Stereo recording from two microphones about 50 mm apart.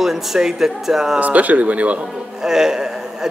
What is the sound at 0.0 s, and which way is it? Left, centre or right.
Speech, centre.